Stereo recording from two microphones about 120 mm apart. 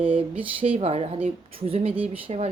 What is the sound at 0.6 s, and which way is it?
A woman's voice, 55° right (ahead or behind).